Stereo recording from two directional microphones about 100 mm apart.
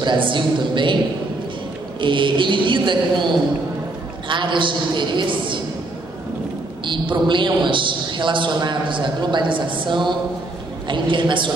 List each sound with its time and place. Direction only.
0.0 s a man's voice: 55° right (ahead or behind)
2.0 s a man's voice: 55° right (ahead or behind)
6.9 s a man's voice: 55° right (ahead or behind)